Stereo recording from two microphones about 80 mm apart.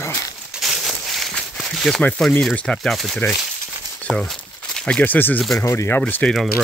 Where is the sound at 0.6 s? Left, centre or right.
Centre.